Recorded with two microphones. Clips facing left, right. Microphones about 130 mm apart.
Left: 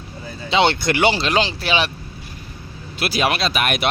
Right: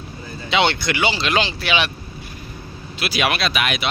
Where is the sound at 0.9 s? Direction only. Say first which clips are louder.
Left 4 dB; 55° left (ahead or behind).